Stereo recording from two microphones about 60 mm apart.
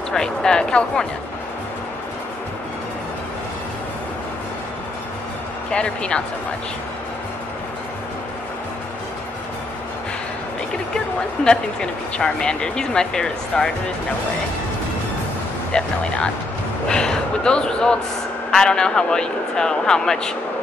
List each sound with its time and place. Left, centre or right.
0.1 s speech: centre
5.7 s speech: centre
11.4 s speech: centre
15.7 s speech: centre